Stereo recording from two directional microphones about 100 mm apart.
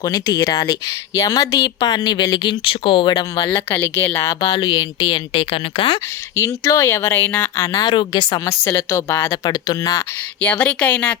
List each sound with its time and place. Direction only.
0.0 s speech: 40° left (ahead or behind); by 3.2 s 55° left (ahead or behind)
3.2 s speech: 40° left (ahead or behind)
3.5 s speech: 25° left (ahead or behind)
4.4 s speech: 40° left (ahead or behind)
4.6 s speech: 55° left (ahead or behind)
6.3 s speech: 30° left (ahead or behind)
7.8 s speech: 45° left (ahead or behind)
8.4 s speech: 30° left (ahead or behind)
9.5 s speech: 40° left (ahead or behind)
10.4 s speech: 15° left (ahead or behind)